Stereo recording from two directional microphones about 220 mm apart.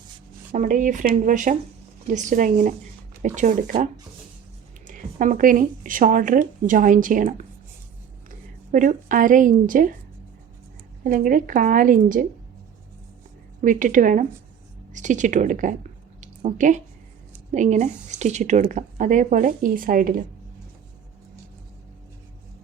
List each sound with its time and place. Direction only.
0.5 s speech: 35° right (ahead or behind)
4.9 s speech: 35° right (ahead or behind)
11.0 s speech: 40° right (ahead or behind)
13.6 s speech: 35° right (ahead or behind)
16.2 s a sound: 35° right (ahead or behind)
17.5 s speech: 35° right (ahead or behind)